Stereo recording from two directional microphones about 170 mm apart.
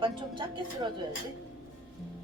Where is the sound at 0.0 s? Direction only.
30° right (ahead or behind).